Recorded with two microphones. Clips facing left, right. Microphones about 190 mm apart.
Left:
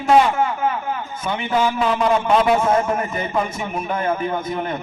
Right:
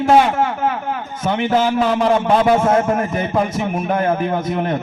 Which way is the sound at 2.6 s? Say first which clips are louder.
Right 3 dB; 50° right (ahead or behind).